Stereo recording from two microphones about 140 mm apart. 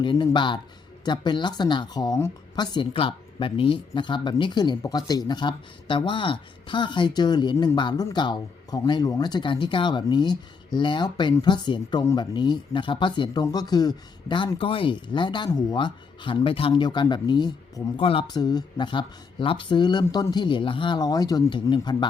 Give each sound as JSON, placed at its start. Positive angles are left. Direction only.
{"t": 0.0, "sound": "speech", "side_deg": 35}
{"t": 2.6, "sound": "speech", "side_deg": 35}
{"t": 18.3, "sound": "speech", "side_deg": 30}